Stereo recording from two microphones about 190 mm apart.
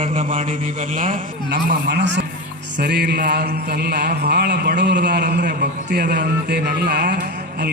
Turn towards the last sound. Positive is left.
turn(degrees=-55)  # may be behind; listen again after turning